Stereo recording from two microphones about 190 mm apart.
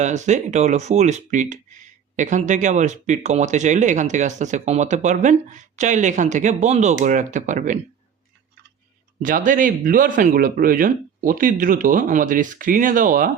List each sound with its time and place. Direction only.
0.0 s speech: 40° right (ahead or behind)
9.2 s speech: 45° right (ahead or behind)